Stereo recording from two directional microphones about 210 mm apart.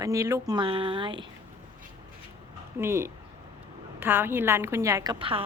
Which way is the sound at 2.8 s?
10° right (ahead or behind).